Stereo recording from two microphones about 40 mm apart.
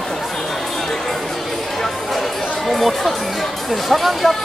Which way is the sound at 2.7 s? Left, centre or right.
Centre.